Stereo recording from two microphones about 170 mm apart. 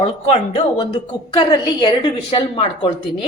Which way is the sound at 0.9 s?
25° left (ahead or behind).